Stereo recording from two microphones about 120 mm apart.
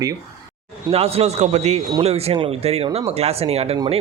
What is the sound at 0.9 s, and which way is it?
A man's voice, 60° right (ahead or behind).